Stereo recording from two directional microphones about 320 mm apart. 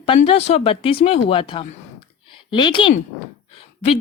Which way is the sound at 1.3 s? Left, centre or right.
Centre.